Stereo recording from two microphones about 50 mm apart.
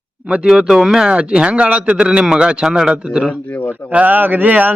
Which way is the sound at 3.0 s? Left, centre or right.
Right.